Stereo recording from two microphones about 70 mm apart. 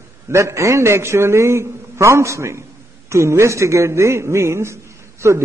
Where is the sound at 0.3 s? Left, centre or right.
Right.